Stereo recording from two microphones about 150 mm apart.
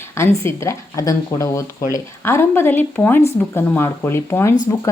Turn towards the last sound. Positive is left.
turn(degrees=15)  # may be behind; listen again after turning